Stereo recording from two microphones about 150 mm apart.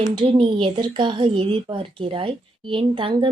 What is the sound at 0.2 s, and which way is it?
A woman's voice, 35° right (ahead or behind).